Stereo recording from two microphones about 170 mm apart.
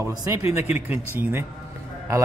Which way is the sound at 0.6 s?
10° right (ahead or behind).